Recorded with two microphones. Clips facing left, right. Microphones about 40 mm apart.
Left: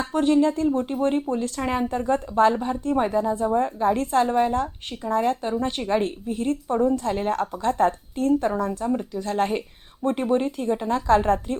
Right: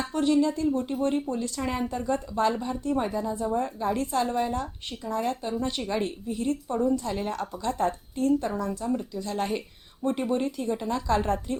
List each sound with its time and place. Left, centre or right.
0.1 s speech: left
3.9 s speech: left
4.2 s speech: left
4.6 s speech: left
8.8 s speech: left